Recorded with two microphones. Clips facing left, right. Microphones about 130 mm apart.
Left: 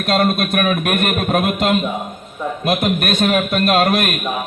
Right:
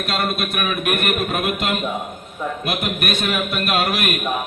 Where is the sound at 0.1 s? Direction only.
45° left (ahead or behind).